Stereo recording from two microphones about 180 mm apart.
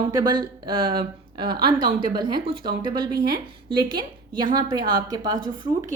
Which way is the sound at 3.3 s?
25° right (ahead or behind).